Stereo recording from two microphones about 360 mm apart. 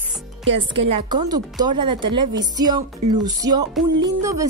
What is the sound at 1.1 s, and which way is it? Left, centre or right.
Speech, centre.